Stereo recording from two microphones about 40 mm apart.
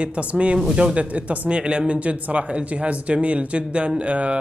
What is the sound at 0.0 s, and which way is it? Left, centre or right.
A man's voice, right.